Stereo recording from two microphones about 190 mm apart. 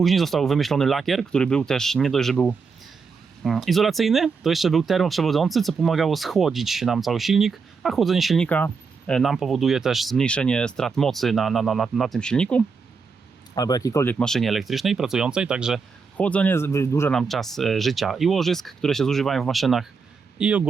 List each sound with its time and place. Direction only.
0.0 s speech: centre (ahead or behind)
13.6 s speech: 20° left (ahead or behind); by 15.8 s 5° right (ahead or behind)
16.1 s speech: 5° left (ahead or behind)
17.2 s speech: centre (ahead or behind)